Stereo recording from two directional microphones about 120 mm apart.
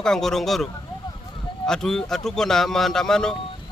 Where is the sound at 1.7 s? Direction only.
5° left (ahead or behind).